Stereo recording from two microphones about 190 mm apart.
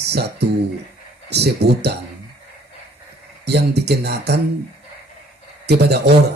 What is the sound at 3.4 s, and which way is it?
Speech, 60° right (ahead or behind).